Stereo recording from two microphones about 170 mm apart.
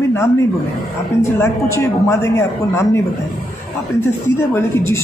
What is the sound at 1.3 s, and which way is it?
Speech, 15° left (ahead or behind).